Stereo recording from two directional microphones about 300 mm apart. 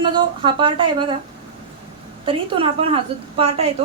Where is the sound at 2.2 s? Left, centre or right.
Centre.